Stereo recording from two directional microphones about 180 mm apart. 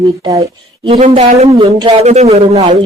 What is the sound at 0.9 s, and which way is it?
Speech, 35° right (ahead or behind).